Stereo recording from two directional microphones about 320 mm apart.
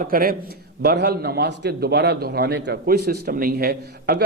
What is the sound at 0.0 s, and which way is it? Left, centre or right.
A man's voice, right.